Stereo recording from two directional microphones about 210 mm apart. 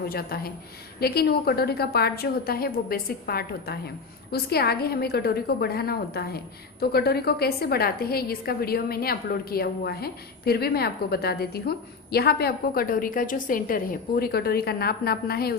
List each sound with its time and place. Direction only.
0.1 s a woman's voice: 45° left (ahead or behind)